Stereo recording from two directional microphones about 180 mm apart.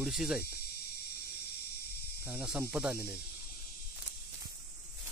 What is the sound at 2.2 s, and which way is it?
Speech, 10° right (ahead or behind).